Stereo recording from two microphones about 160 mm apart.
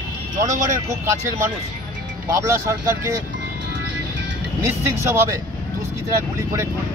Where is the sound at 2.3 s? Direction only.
20° right (ahead or behind).